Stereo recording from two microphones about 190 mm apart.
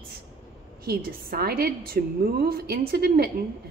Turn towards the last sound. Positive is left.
turn(degrees=-55)  # may be behind; listen again after turning